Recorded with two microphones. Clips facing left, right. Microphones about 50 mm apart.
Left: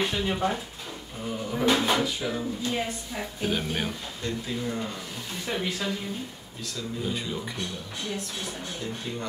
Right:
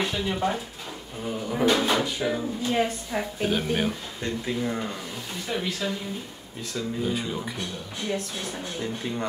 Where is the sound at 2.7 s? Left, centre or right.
Right.